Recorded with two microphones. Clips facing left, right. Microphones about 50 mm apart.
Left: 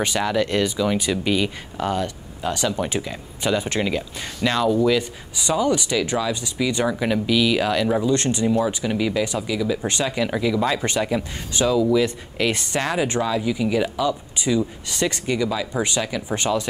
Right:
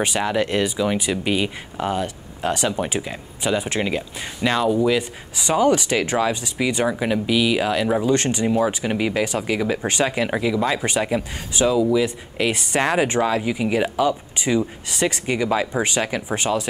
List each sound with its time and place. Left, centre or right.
0.0 s speech: right
2.4 s speech: right
2.7 s speech: centre
5.4 s speech: right
9.8 s speech: right